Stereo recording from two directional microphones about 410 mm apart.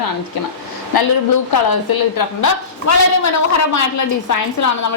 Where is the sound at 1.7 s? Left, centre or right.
Left.